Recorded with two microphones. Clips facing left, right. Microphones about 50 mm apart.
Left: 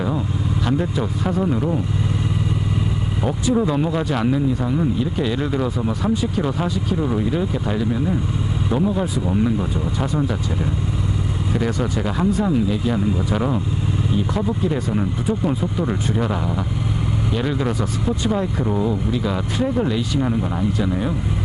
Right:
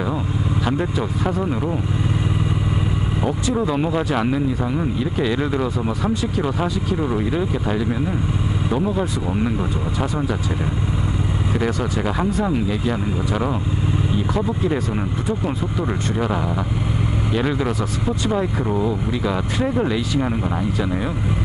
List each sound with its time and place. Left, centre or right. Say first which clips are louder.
0.7 s speech: left 2 dB; centre
3.3 s speech: left 2 dB; centre
9.3 s speech: left 4 dB; centre
11.5 s speech: even; centre
15.2 s speech: left 2 dB; centre